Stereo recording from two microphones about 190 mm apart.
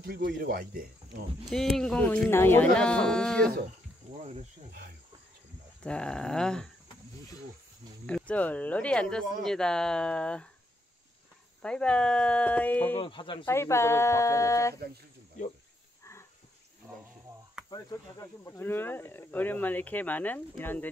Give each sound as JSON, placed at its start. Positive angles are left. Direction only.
{"t": 0.0, "sound": "speech", "side_deg": -60}
{"t": 1.5, "sound": "speech", "side_deg": 0}
{"t": 4.2, "sound": "speech", "side_deg": -35}
{"t": 5.8, "sound": "speech", "side_deg": 5}
{"t": 8.1, "sound": "speech", "side_deg": 5}
{"t": 11.6, "sound": "speech", "side_deg": 5}
{"t": 12.9, "sound": "speech", "side_deg": 25}
{"t": 13.5, "sound": "speech", "side_deg": 15}
{"t": 16.0, "sound": "a sound", "side_deg": 15}
{"t": 17.6, "sound": "speech", "side_deg": 15}